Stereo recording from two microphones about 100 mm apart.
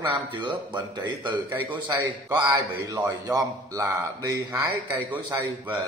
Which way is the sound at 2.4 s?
40° right (ahead or behind).